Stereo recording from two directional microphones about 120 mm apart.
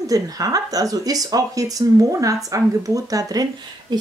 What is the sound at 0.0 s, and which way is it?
A woman's voice, 30° right (ahead or behind).